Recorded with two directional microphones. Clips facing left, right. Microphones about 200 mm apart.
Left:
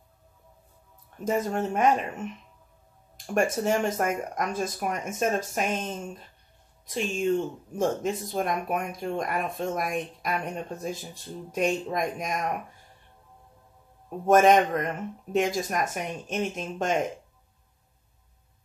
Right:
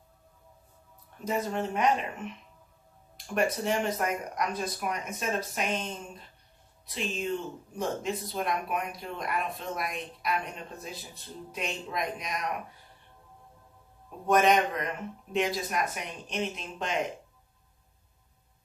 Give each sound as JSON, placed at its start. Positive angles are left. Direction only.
{"t": 1.2, "sound": "speech", "side_deg": 45}
{"t": 3.3, "sound": "speech", "side_deg": 50}
{"t": 6.9, "sound": "speech", "side_deg": 45}
{"t": 14.2, "sound": "speech", "side_deg": 45}